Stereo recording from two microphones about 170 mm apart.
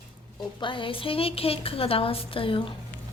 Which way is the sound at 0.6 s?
30° left (ahead or behind).